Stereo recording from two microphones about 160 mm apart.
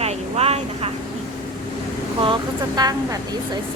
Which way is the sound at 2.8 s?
25° right (ahead or behind).